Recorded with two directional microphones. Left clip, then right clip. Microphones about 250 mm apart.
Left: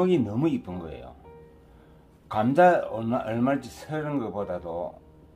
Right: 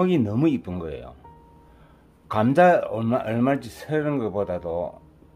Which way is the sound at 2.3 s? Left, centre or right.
Right.